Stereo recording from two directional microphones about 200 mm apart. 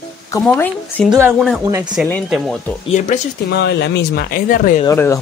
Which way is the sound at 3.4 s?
55° left (ahead or behind).